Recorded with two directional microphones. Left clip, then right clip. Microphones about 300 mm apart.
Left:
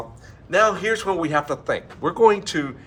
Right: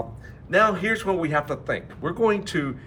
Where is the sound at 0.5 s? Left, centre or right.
Centre.